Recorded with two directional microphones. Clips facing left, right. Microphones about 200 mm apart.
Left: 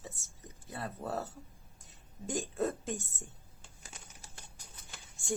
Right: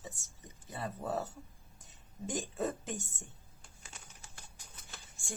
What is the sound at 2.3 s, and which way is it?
Speech, centre (ahead or behind).